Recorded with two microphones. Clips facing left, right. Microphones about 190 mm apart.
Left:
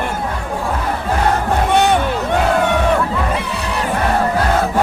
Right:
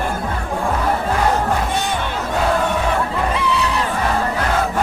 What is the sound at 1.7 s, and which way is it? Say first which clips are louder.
Hubbub: left 8 dB; 65° left (ahead or behind).